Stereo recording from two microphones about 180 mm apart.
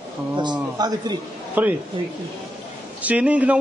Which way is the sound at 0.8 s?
20° right (ahead or behind).